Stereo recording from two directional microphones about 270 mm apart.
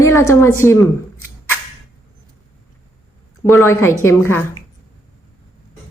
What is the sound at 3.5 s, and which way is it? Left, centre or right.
Speech, centre.